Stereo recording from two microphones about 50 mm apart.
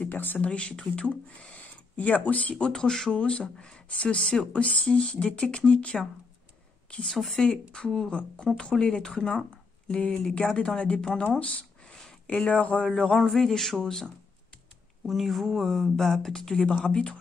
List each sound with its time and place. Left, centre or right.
0.0 s speech: left
0.4 s speech: left
2.5 s speech: centre
3.1 s speech: left
7.1 s speech: centre
7.4 s speech: centre
11.8 s a sound: centre
12.4 s speech: left
12.8 s speech: centre
15.0 s speech: centre
16.8 s speech: centre